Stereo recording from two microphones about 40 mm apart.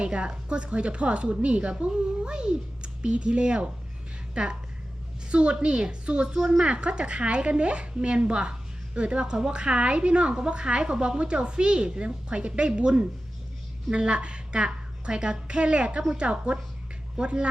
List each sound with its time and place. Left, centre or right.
0.0 s a woman's voice: right